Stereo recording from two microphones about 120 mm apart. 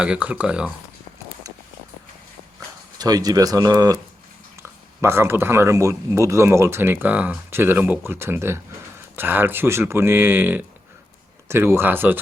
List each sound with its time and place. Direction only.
0.0 s speech: 10° right (ahead or behind)
1.5 s a sound: 30° right (ahead or behind)
3.0 s speech: 30° right (ahead or behind)
4.5 s speech: 20° right (ahead or behind)